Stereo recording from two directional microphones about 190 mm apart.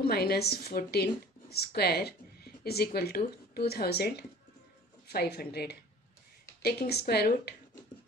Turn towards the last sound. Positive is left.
turn(degrees=55)  # may be behind; listen again after turning